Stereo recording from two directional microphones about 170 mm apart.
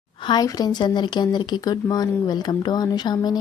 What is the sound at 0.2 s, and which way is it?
Speech, 25° left (ahead or behind).